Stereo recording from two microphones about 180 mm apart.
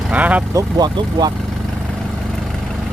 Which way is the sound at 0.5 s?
25° right (ahead or behind).